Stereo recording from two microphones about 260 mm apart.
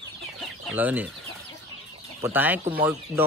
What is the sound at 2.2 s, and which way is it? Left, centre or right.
Speech, centre.